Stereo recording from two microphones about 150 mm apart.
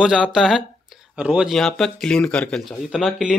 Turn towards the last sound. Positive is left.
turn(degrees=0)  # may be behind; listen again after turning